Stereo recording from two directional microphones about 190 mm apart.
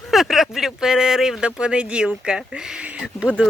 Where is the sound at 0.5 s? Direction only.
5° right (ahead or behind).